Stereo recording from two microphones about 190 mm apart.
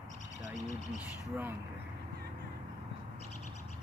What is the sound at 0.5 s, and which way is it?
Speech, 40° left (ahead or behind).